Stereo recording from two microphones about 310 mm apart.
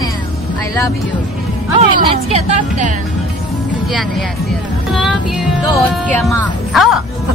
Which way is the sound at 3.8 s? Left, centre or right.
Centre.